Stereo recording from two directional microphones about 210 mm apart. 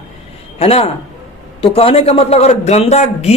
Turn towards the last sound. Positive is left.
turn(degrees=30)  # may be behind; listen again after turning